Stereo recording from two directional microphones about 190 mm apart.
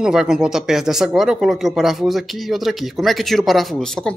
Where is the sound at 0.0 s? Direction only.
5° right (ahead or behind).